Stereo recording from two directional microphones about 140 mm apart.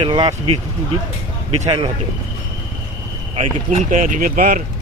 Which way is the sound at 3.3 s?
50° right (ahead or behind).